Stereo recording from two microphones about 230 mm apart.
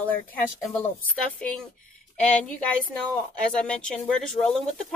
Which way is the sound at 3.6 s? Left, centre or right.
Centre.